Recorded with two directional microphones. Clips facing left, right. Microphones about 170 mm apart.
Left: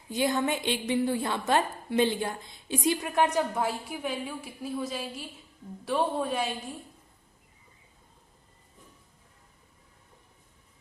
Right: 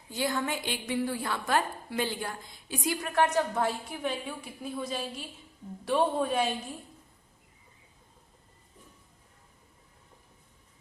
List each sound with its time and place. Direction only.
0.1 s a woman's voice: 20° left (ahead or behind); by 6.5 s centre (ahead or behind)